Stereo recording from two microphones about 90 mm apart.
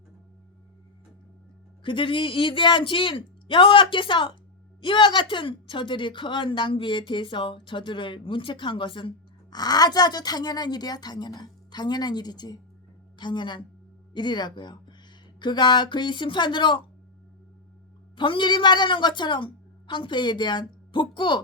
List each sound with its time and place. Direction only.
1.8 s a woman's voice: 65° left (ahead or behind)
18.2 s a woman's voice: 65° left (ahead or behind)